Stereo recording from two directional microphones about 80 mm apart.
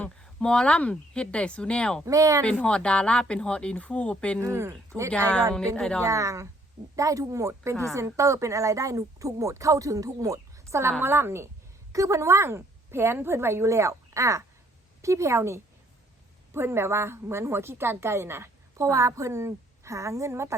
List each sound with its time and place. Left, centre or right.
0.0 s speech: centre
2.0 s speech: right
2.4 s speech: centre
4.4 s a woman's voice: right
5.1 s speech: centre
6.0 s a woman's voice: right
11.9 s a woman's voice: right
18.9 s a woman's voice: right